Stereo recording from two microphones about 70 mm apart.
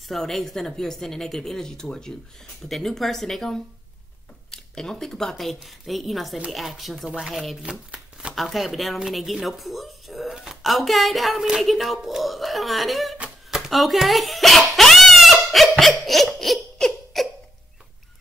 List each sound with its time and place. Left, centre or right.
0.1 s speech: centre
7.9 s shuffling cards: centre
8.4 s speech: centre
13.5 s a sound: centre